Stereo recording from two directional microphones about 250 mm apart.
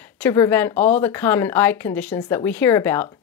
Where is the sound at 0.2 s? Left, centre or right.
Centre.